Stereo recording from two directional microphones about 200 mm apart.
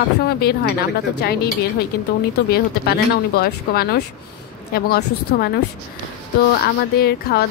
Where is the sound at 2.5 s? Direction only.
50° left (ahead or behind).